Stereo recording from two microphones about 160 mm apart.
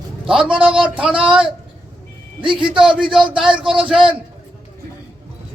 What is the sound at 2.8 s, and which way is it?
Speech, 5° right (ahead or behind).